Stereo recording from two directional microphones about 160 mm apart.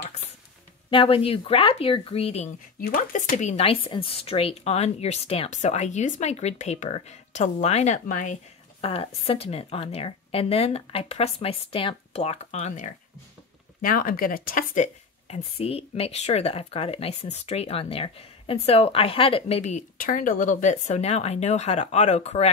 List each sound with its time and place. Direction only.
0.8 s speech: 35° left (ahead or behind)
2.8 s speech: 60° left (ahead or behind)
8.8 s speech: 35° left (ahead or behind)
13.7 s speech: 60° left (ahead or behind)
15.2 s speech: 40° left (ahead or behind)